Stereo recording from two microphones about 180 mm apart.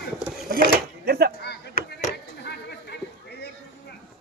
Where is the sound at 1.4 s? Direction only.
65° left (ahead or behind).